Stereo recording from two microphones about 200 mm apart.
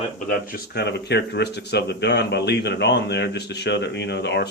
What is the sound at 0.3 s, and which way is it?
Speech, 45° left (ahead or behind).